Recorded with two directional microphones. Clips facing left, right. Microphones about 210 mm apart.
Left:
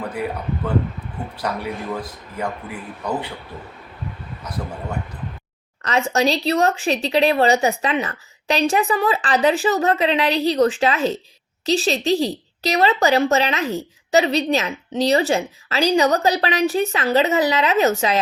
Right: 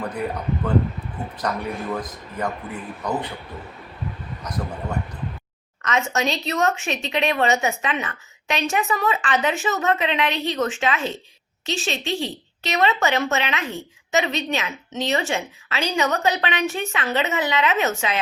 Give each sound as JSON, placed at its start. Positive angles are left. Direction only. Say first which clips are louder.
{"t": 1.4, "sound": "a man's voice", "louder": "even", "side_deg": 10}
{"t": 5.8, "sound": "a woman's voice", "louder": "left 4 dB", "side_deg": 35}